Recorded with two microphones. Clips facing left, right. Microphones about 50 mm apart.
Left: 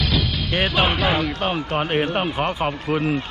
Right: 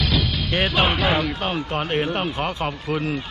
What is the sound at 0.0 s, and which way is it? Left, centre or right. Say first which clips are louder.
A man's voice: even; centre.